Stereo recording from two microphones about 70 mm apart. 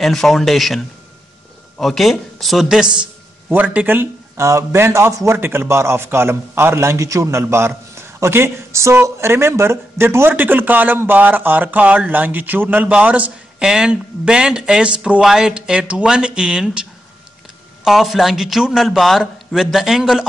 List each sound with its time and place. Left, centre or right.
0.0 s a man's voice: centre
3.5 s speech: right
4.4 s a man's voice: right; by 16.8 s centre
17.8 s a man's voice: centre